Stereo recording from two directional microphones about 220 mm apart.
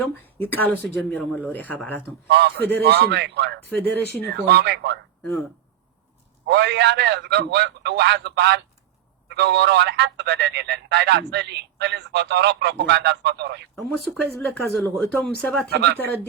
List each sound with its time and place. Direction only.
0.3 s speech: 10° left (ahead or behind)
2.2 s speech: 50° right (ahead or behind)
3.7 s speech: 10° left (ahead or behind)
4.3 s speech: 50° right (ahead or behind)
5.2 s speech: 5° left (ahead or behind)
6.5 s speech: 50° right (ahead or behind)
13.7 s speech: centre (ahead or behind)